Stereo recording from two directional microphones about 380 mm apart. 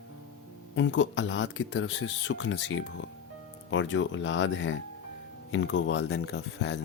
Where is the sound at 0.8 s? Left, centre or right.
Left.